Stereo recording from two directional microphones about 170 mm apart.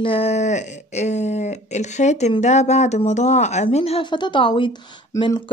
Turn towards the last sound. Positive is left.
turn(degrees=30)  # may be behind; listen again after turning